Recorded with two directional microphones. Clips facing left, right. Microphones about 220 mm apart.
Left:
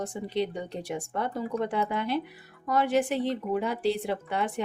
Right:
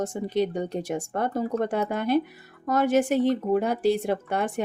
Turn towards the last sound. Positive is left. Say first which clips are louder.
# right 3 dB
turn(degrees=-45)  # may be behind; listen again after turning